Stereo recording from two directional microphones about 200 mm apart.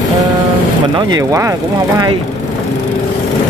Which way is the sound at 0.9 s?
20° right (ahead or behind).